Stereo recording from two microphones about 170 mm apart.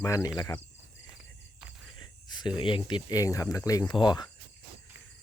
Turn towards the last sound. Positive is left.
turn(degrees=25)  # may be behind; listen again after turning